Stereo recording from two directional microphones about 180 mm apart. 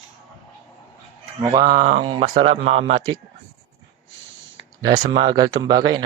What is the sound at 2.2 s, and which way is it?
Speech, 35° right (ahead or behind).